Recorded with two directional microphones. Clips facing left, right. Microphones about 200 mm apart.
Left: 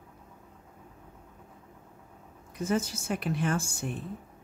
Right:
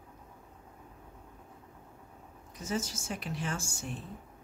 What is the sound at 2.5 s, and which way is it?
A woman's voice, 60° left (ahead or behind).